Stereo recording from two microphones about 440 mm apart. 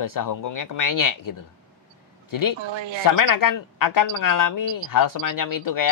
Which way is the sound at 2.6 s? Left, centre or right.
Right.